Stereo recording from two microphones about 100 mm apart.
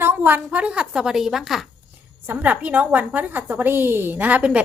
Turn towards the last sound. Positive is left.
turn(degrees=-10)  # may be behind; listen again after turning